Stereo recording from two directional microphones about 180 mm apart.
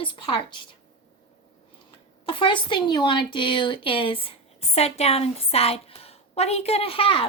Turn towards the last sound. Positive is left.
turn(degrees=30)  # may be behind; listen again after turning